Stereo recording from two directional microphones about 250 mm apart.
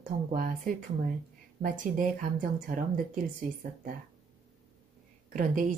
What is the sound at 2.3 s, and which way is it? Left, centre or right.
A woman's voice, right.